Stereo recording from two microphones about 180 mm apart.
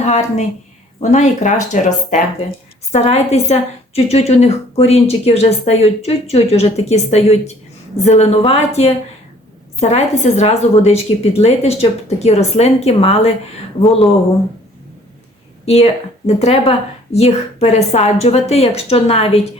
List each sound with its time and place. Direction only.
0.0 s a woman's voice: 40° left (ahead or behind)
15.6 s a woman's voice: 35° left (ahead or behind)